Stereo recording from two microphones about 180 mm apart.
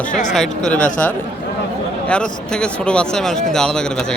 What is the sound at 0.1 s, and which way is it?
Speech, 45° left (ahead or behind).